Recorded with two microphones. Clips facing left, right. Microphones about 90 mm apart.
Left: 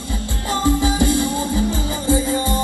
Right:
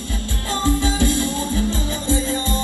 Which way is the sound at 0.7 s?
15° left (ahead or behind).